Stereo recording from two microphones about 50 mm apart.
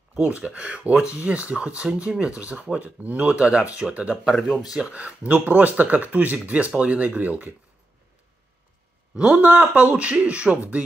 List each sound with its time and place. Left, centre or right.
0.4 s speech: right
2.7 s speech: right
9.1 s speech: right